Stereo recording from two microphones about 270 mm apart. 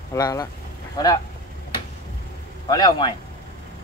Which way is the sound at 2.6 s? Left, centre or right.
Centre.